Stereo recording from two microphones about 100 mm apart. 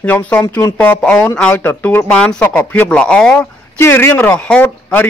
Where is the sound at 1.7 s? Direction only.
20° left (ahead or behind).